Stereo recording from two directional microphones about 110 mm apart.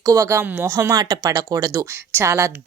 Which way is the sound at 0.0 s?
25° right (ahead or behind).